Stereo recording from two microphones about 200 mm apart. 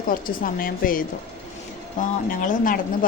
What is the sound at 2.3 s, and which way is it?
Speech, 40° left (ahead or behind).